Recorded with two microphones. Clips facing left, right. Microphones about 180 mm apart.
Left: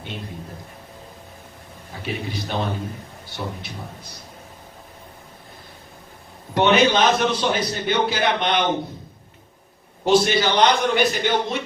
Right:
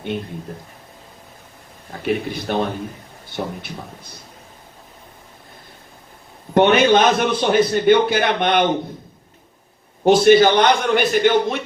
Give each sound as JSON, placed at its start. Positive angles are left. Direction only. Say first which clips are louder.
{"t": 2.0, "sound": "a man's voice", "louder": "right 7 dB", "side_deg": -55}
{"t": 6.5, "sound": "a man's voice", "louder": "right 4 dB", "side_deg": -55}
{"t": 10.0, "sound": "a man's voice", "louder": "right 7 dB", "side_deg": -55}